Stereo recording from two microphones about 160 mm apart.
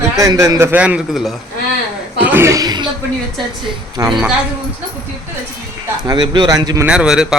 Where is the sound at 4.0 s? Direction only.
20° right (ahead or behind).